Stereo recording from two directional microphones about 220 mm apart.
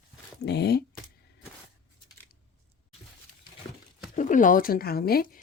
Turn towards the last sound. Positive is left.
turn(degrees=45)  # may be behind; listen again after turning